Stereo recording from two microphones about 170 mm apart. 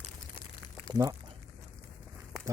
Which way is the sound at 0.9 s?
20° right (ahead or behind).